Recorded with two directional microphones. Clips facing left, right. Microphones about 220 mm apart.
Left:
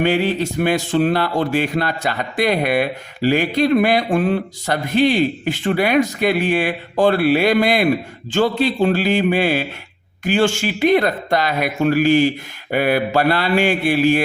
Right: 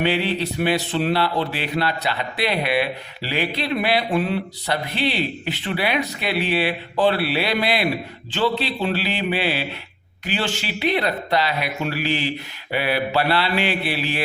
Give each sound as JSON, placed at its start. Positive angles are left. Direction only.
{"t": 0.0, "sound": "speech", "side_deg": 45}